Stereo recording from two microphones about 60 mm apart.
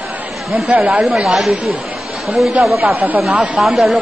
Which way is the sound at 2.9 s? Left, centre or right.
Right.